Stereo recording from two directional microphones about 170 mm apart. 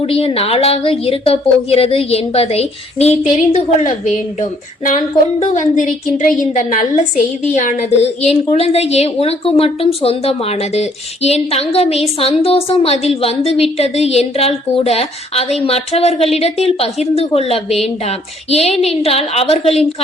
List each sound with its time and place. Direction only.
0.0 s a woman's voice: 35° left (ahead or behind)
5.4 s a woman's voice: 45° left (ahead or behind)